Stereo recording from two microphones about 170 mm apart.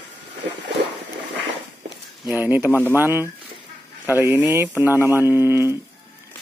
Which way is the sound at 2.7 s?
10° left (ahead or behind).